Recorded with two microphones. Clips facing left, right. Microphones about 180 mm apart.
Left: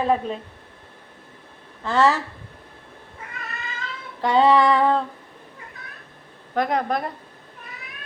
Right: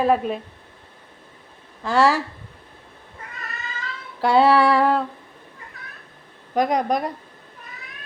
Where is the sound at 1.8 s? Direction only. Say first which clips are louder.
Right 1 dB; 10° right (ahead or behind).